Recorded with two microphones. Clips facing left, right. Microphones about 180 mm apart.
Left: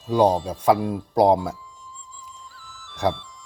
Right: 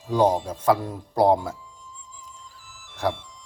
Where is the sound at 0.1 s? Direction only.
10° left (ahead or behind).